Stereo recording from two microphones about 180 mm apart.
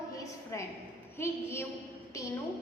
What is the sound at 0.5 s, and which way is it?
A woman's voice, 15° left (ahead or behind).